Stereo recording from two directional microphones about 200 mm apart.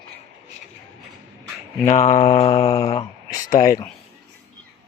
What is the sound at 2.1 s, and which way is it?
Mantra, 30° left (ahead or behind).